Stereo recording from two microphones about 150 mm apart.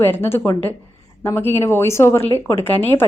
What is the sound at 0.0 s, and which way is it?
A woman's voice, 15° left (ahead or behind).